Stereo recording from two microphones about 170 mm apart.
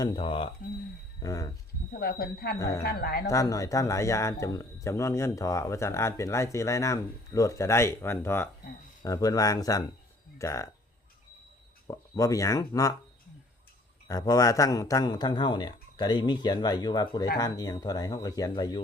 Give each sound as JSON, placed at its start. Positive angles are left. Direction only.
{"t": 0.0, "sound": "a man's voice", "side_deg": 25}
{"t": 1.2, "sound": "a man's voice", "side_deg": 20}
{"t": 1.9, "sound": "speech", "side_deg": 65}
{"t": 2.6, "sound": "a man's voice", "side_deg": 20}
{"t": 2.8, "sound": "speech", "side_deg": 65}
{"t": 3.2, "sound": "a man's voice", "side_deg": 20}
{"t": 11.9, "sound": "a man's voice", "side_deg": 20}
{"t": 14.1, "sound": "a man's voice", "side_deg": 20}